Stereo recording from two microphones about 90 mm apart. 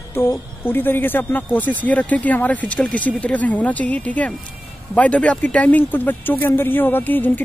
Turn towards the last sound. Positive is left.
turn(degrees=20)  # may be behind; listen again after turning